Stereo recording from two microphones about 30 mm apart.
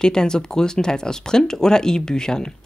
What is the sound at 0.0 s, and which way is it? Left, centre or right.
Speech, left.